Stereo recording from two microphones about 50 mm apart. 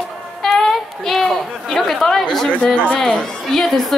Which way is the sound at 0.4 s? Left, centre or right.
Centre.